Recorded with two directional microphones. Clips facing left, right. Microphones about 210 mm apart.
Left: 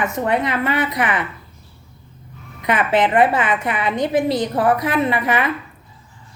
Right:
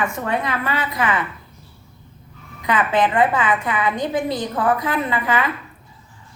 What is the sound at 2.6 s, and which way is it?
A woman's voice, 20° left (ahead or behind).